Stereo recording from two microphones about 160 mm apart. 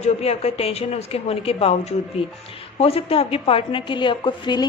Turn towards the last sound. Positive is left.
turn(degrees=30)  # may be behind; listen again after turning